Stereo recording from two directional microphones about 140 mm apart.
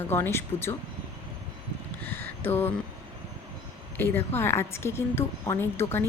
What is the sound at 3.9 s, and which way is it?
Speech, 15° left (ahead or behind).